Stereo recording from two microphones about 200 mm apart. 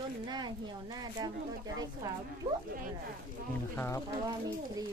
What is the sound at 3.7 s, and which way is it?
Speech, 15° left (ahead or behind).